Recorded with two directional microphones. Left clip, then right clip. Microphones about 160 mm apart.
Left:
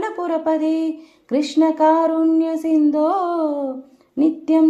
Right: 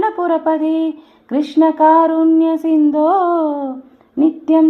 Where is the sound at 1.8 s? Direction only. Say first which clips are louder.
Right 6 dB; 20° left (ahead or behind).